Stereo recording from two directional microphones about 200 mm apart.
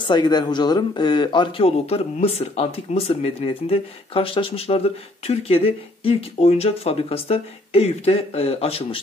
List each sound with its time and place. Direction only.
0.0 s speech: 20° left (ahead or behind)